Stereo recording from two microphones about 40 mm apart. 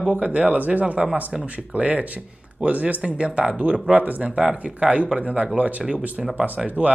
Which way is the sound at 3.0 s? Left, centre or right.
Right.